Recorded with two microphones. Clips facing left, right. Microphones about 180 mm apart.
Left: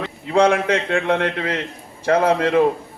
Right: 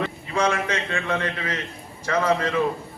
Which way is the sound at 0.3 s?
60° left (ahead or behind).